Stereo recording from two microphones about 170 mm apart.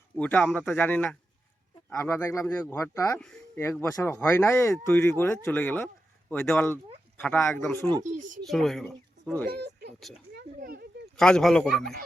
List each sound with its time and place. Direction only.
0.2 s speech: 10° left (ahead or behind)
8.0 s speech: 50° right (ahead or behind)
8.4 s speech: centre (ahead or behind)
9.5 s speech: 80° right
10.3 s a sound: 65° right (ahead or behind)
11.2 s speech: 5° left (ahead or behind)